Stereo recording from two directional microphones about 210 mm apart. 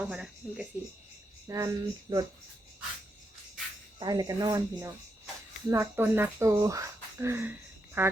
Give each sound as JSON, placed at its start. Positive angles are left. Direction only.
{"t": 0.0, "sound": "speech", "side_deg": -5}
{"t": 1.5, "sound": "speech", "side_deg": -15}
{"t": 4.0, "sound": "speech", "side_deg": -20}